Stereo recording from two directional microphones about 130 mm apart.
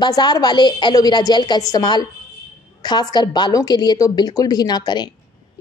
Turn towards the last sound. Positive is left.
turn(degrees=35)  # may be behind; listen again after turning